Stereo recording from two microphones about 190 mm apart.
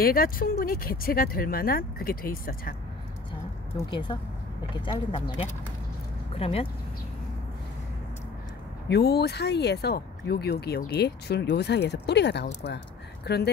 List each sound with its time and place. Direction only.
0.0 s speech: 50° left (ahead or behind)
3.7 s speech: 25° left (ahead or behind)
6.3 s speech: 30° left (ahead or behind)
8.8 s speech: 60° left (ahead or behind)
12.6 s a sound: 60° left (ahead or behind)